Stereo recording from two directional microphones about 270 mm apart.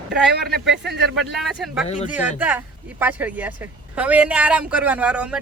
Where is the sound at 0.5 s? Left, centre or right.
Right.